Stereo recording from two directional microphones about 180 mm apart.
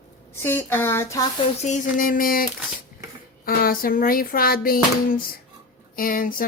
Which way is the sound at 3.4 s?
55° left (ahead or behind).